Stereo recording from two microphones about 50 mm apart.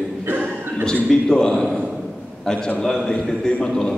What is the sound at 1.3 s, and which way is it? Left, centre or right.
Speech, centre.